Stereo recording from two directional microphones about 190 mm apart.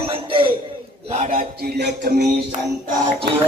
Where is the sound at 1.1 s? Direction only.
40° right (ahead or behind); by 2.2 s 60° right (ahead or behind).